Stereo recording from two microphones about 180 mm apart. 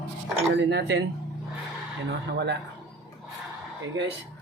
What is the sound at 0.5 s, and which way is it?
Speech, 75° right (ahead or behind).